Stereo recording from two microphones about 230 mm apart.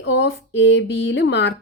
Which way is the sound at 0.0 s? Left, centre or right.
Left.